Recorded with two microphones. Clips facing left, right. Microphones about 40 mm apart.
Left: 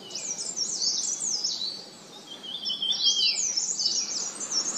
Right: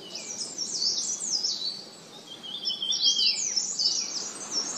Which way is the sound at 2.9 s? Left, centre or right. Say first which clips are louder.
Even; left.